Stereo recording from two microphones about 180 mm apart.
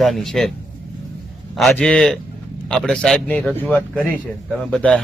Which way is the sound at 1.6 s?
5° left (ahead or behind).